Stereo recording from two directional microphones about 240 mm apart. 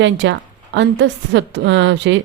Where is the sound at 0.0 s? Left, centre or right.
Right.